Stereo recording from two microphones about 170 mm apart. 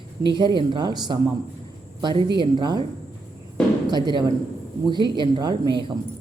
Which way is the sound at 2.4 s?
25° right (ahead or behind).